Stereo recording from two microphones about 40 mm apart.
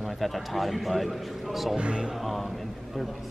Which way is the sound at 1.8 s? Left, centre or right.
Right.